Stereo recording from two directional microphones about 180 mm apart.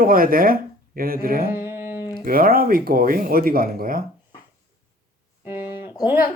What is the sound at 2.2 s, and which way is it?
Speech, 55° right (ahead or behind).